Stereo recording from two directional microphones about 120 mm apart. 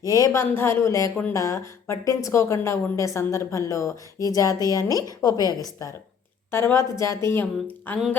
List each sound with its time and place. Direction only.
0.0 s a woman's voice: 30° left (ahead or behind)